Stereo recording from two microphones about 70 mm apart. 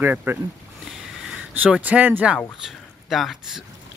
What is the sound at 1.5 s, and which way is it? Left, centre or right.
Speech, right.